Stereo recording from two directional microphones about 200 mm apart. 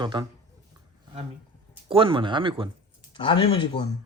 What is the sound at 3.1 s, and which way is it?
Speech, 25° left (ahead or behind).